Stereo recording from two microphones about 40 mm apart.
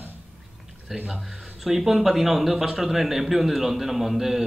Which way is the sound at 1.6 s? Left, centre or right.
Centre.